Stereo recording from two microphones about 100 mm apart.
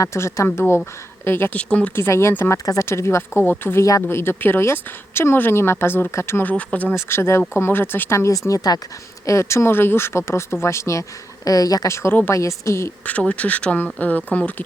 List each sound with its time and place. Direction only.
0.0 s speech: 30° left (ahead or behind); by 1.9 s 15° left (ahead or behind)
2.0 s speech: 25° left (ahead or behind)
6.9 s a woman's voice: 25° left (ahead or behind)
12.0 s speech: 20° left (ahead or behind)
12.3 s a woman's voice: 30° left (ahead or behind)
13.1 s speech: 15° left (ahead or behind)